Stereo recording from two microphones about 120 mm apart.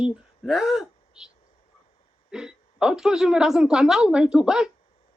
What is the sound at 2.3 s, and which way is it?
A woman's voice, 5° right (ahead or behind).